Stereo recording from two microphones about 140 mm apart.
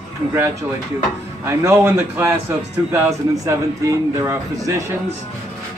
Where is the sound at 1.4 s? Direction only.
20° right (ahead or behind).